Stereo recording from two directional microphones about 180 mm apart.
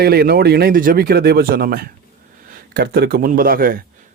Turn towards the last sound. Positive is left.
turn(degrees=-50)  # may be behind; listen again after turning